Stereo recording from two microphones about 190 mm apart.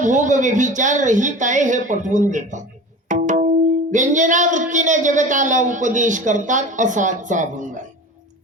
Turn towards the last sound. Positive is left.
turn(degrees=-40)  # may be behind; listen again after turning